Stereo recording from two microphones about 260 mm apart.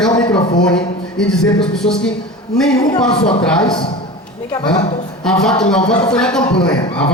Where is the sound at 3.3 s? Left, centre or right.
Centre.